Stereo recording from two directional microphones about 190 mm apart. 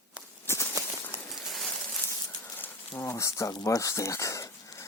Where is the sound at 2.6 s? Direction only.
10° left (ahead or behind).